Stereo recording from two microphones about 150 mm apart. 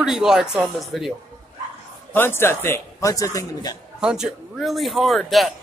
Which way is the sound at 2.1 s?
15° left (ahead or behind).